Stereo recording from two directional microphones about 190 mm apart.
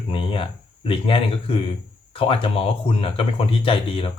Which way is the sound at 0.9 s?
30° left (ahead or behind).